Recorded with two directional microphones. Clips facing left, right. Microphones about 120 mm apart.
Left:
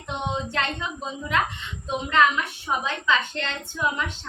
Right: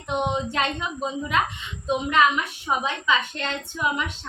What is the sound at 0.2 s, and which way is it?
A woman's voice, 15° right (ahead or behind).